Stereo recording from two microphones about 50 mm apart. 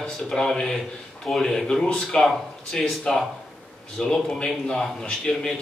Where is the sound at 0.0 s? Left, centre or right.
Centre.